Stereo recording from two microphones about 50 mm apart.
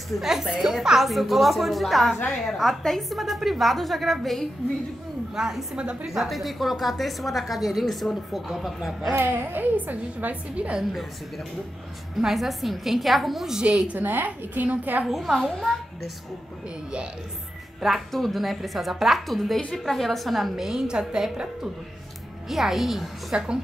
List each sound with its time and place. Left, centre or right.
0.1 s a woman's voice: centre
5.3 s a woman's voice: centre
9.2 s a woman's voice: right
10.5 s a woman's voice: right
12.2 s a woman's voice: centre
13.6 s a woman's voice: centre
13.9 s a woman's voice: right
15.0 s a woman's voice: centre
17.7 s a woman's voice: centre
22.5 s a woman's voice: centre
23.3 s a woman's voice: centre